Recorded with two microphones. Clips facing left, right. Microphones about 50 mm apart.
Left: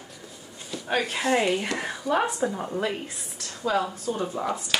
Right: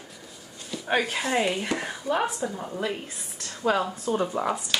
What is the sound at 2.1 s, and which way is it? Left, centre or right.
Speech, right.